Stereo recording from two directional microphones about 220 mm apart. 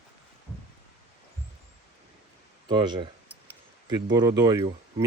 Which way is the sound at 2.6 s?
20° right (ahead or behind).